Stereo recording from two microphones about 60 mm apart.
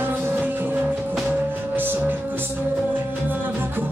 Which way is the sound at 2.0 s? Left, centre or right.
Right.